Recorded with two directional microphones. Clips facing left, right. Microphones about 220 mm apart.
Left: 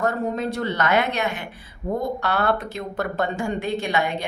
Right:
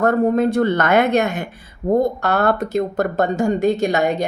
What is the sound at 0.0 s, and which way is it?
A woman's voice, 55° right (ahead or behind).